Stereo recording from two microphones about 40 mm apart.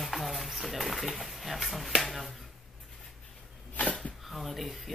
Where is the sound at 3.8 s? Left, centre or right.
Left.